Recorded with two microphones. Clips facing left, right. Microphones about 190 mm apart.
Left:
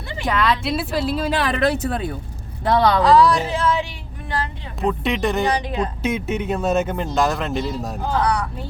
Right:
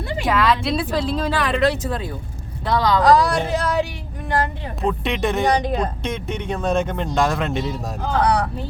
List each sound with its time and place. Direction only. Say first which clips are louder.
0.3 s a woman's voice: right 1 dB; centre (ahead or behind)
1.5 s speech: even; 60° left (ahead or behind)
3.0 s speech: left 1 dB; 45° right (ahead or behind)
4.8 s speech: left 1 dB; centre (ahead or behind)
5.5 s speech: right 2 dB; 45° right (ahead or behind)
6.0 s speech: left 4 dB; 5° left (ahead or behind)
8.2 s speech: right 4 dB; 35° right (ahead or behind)